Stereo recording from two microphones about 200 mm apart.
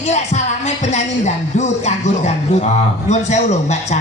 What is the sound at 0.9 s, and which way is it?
Music, 35° left (ahead or behind).